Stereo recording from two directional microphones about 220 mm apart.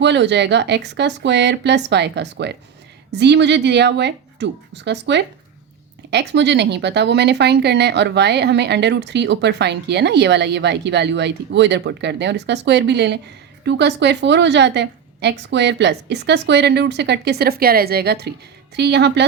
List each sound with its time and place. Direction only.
0.0 s speech: 50° right (ahead or behind)